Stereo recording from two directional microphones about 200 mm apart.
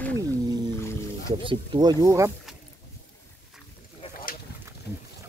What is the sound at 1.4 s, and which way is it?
Speech, 25° right (ahead or behind).